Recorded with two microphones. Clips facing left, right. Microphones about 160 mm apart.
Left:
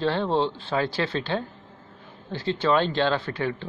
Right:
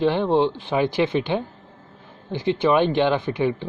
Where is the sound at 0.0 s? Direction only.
15° right (ahead or behind).